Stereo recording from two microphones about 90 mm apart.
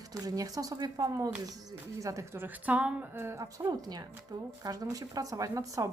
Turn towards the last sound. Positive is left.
turn(degrees=-40)  # may be behind; listen again after turning